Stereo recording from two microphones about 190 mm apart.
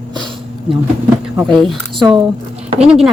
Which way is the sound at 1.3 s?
Centre (ahead or behind).